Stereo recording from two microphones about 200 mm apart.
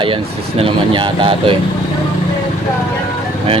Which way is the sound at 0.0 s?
25° right (ahead or behind).